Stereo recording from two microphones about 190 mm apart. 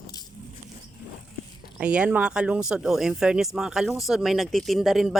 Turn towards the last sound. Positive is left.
turn(degrees=0)  # may be behind; listen again after turning